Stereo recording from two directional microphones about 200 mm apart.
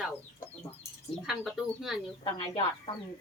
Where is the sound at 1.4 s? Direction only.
Centre (ahead or behind).